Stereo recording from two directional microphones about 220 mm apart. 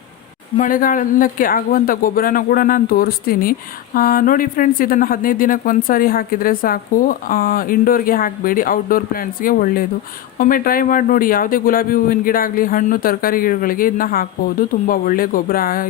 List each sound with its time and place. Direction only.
0.5 s speech: 40° left (ahead or behind)